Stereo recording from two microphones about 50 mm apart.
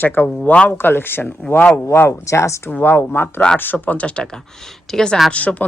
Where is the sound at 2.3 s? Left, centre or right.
Left.